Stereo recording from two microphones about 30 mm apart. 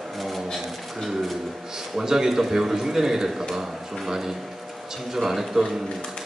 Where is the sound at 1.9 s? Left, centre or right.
Centre.